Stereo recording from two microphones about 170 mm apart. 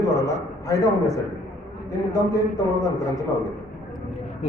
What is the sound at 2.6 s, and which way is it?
Speech, 20° left (ahead or behind).